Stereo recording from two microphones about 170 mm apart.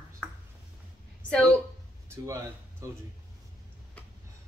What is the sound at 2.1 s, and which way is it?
Speech, 15° right (ahead or behind).